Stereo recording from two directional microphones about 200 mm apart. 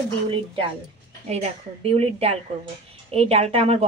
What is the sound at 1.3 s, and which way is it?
A woman's voice, 30° right (ahead or behind).